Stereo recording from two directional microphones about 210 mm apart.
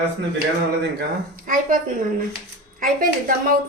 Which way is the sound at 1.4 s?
40° right (ahead or behind).